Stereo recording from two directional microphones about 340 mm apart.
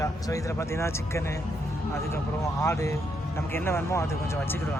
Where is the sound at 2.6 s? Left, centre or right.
Centre.